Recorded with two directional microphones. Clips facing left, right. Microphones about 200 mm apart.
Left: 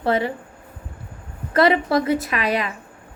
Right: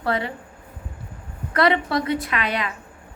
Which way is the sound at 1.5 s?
25° left (ahead or behind).